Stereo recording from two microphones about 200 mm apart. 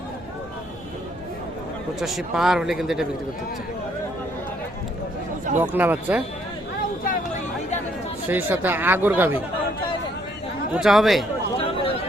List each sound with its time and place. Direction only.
2.0 s a man's voice: centre (ahead or behind)
5.5 s speech: 10° right (ahead or behind)
7.0 s a sound: 40° left (ahead or behind)
8.3 s speech: 10° right (ahead or behind)
10.8 s a man's voice: centre (ahead or behind)
11.5 s a sound: 30° left (ahead or behind)